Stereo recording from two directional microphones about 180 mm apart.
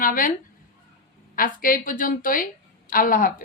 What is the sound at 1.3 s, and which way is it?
A woman's voice, 50° left (ahead or behind).